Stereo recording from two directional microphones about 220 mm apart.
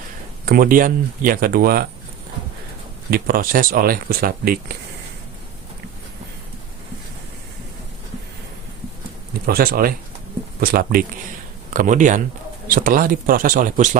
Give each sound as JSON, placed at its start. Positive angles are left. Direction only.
{"t": 0.4, "sound": "speech", "side_deg": -40}
{"t": 3.1, "sound": "speech", "side_deg": -40}
{"t": 9.5, "sound": "speech", "side_deg": -40}